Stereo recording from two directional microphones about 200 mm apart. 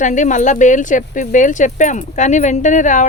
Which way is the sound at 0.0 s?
40° left (ahead or behind).